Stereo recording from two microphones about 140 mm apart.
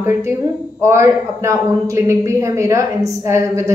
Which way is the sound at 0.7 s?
20° right (ahead or behind).